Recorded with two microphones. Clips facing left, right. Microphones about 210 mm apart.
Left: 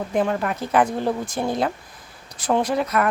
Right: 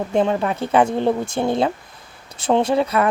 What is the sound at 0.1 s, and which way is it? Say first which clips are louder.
Speech: right 3 dB; 25° right (ahead or behind).